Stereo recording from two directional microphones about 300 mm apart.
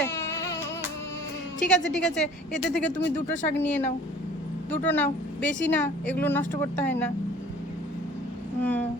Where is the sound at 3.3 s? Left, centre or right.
Left.